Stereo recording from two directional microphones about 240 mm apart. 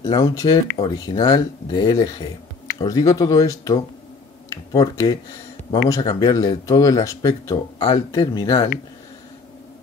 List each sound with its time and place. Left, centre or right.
0.0 s speech: centre